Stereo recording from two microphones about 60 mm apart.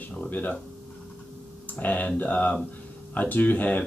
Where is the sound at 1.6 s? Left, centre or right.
Left.